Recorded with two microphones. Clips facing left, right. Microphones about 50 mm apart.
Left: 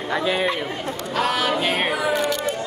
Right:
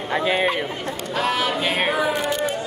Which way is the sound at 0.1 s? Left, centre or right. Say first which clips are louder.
Right 1 dB; right.